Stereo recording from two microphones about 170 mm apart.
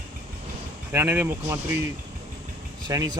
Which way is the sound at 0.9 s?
10° right (ahead or behind).